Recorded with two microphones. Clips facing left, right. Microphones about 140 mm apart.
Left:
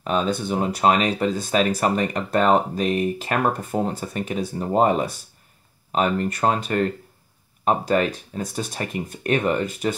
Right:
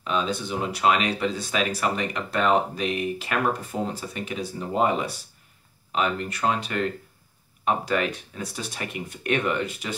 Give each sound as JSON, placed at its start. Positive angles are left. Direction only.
{"t": 0.0, "sound": "speech", "side_deg": 45}